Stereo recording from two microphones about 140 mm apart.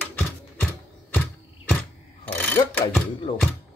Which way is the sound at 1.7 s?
10° left (ahead or behind).